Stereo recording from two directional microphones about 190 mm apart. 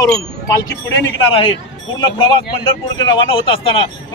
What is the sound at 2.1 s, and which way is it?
Speech, 25° left (ahead or behind).